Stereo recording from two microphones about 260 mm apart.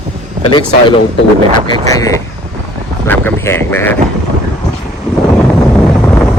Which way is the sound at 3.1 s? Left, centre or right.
Centre.